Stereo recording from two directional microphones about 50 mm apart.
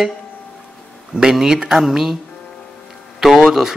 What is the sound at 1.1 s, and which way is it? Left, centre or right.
A man's voice, centre.